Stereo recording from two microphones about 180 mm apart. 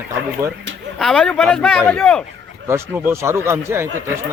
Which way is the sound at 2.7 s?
10° right (ahead or behind).